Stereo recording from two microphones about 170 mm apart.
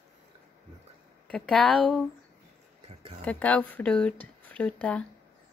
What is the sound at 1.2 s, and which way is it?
Speech, 5° left (ahead or behind).